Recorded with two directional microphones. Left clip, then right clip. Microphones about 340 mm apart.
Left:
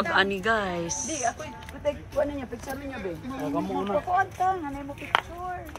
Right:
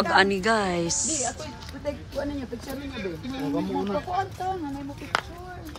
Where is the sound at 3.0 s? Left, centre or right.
Centre.